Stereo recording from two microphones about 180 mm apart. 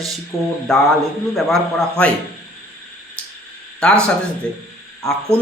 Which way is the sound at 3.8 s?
5° left (ahead or behind).